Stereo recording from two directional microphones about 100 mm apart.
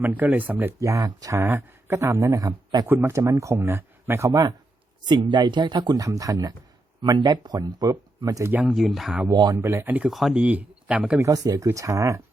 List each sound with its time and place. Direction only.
0.0 s speech: 15° right (ahead or behind)
0.8 s speech: 35° right (ahead or behind)
1.4 s speech: 25° right (ahead or behind); by 4.5 s 40° right (ahead or behind)
5.0 s speech: 50° right (ahead or behind); by 8.5 s 35° right (ahead or behind)
8.6 s speech: centre (ahead or behind)
9.3 s speech: 45° right (ahead or behind)
9.6 s speech: 25° right (ahead or behind)
10.1 s speech: centre (ahead or behind)
10.3 s speech: 15° right (ahead or behind)
11.2 s speech: 35° right (ahead or behind)